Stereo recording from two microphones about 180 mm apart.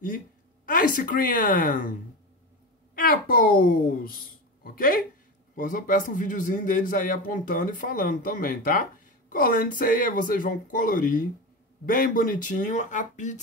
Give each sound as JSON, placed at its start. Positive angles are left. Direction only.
{"t": 0.7, "sound": "a man's voice", "side_deg": 50}
{"t": 3.0, "sound": "a man's voice", "side_deg": 55}